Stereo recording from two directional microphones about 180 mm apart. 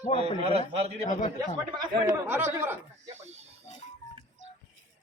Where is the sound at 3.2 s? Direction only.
35° right (ahead or behind).